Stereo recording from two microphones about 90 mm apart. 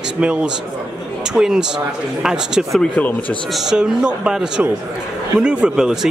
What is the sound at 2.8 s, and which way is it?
Speech, 20° left (ahead or behind).